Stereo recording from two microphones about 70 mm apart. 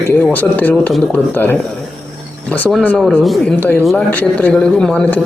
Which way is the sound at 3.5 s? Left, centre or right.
Left.